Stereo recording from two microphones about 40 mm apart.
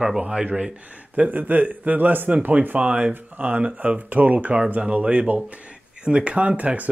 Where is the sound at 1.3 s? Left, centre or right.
Right.